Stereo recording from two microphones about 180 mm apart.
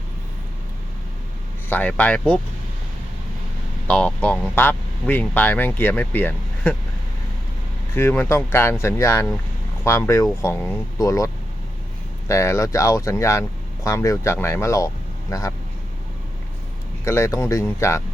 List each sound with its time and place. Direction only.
1.7 s speech: 10° left (ahead or behind)
3.8 s speech: 5° left (ahead or behind)
7.9 s speech: 10° left (ahead or behind)
12.3 s speech: 15° left (ahead or behind)
17.1 s speech: 15° left (ahead or behind)